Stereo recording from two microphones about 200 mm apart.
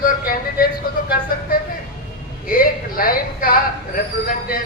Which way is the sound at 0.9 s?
45° left (ahead or behind).